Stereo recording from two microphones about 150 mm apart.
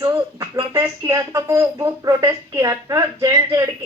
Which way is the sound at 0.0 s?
20° right (ahead or behind).